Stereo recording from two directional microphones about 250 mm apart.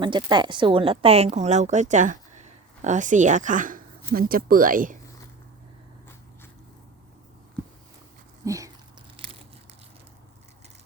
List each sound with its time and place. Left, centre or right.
0.0 s a woman's voice: centre; by 4.9 s right
8.4 s a sound: centre
9.2 s crushing: right